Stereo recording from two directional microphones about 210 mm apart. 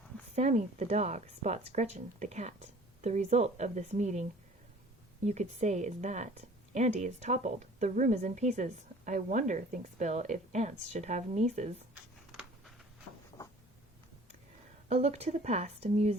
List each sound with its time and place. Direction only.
0.3 s speech: 30° right (ahead or behind)
12.3 s a sound: centre (ahead or behind)
14.8 s speech: 30° right (ahead or behind)